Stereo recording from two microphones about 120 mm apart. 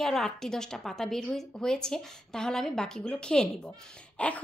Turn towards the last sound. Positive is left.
turn(degrees=10)  # may be behind; listen again after turning